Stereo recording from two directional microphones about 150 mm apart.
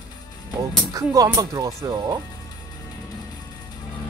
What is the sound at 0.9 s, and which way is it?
Speech, 25° right (ahead or behind).